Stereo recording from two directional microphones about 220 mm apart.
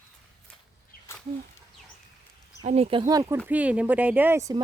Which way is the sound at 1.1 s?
10° left (ahead or behind).